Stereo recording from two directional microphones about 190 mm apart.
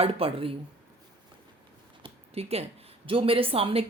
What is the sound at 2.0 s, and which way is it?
Speech, 30° right (ahead or behind).